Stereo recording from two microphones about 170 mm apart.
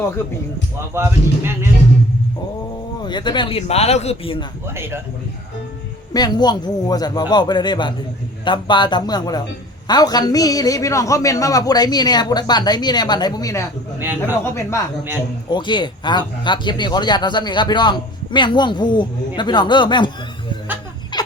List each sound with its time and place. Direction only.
0.9 s speech: 15° right (ahead or behind)
3.0 s speech: 25° left (ahead or behind)
4.6 s speech: 15° right (ahead or behind)
6.1 s a man's voice: 25° left (ahead or behind)
14.0 s speech: 10° right (ahead or behind)
15.4 s a man's voice: 25° left (ahead or behind)
21.1 s a sound: 25° left (ahead or behind)